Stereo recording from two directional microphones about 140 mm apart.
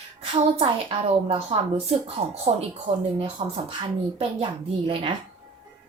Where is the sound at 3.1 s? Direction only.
35° right (ahead or behind).